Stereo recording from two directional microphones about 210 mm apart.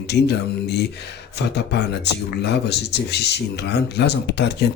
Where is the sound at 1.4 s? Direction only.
50° left (ahead or behind).